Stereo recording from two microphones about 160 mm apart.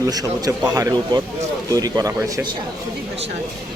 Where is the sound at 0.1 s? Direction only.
25° right (ahead or behind).